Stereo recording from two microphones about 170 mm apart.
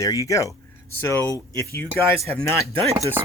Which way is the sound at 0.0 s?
20° left (ahead or behind).